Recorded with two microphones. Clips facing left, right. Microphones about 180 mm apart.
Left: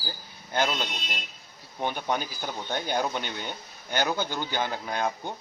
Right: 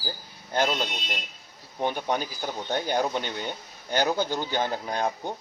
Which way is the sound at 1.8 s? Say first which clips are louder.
Right 2 dB; 30° right (ahead or behind).